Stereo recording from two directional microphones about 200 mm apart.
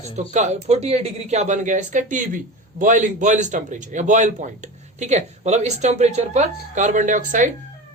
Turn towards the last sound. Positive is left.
turn(degrees=-40)  # may be behind; listen again after turning